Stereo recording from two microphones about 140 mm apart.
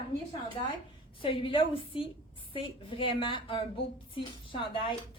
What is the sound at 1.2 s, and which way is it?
Speech, 40° left (ahead or behind).